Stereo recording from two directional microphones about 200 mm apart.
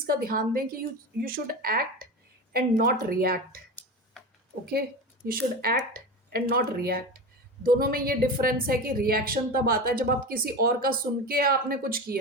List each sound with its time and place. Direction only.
0.1 s a woman's voice: 45° right (ahead or behind)
4.6 s a woman's voice: 50° right (ahead or behind)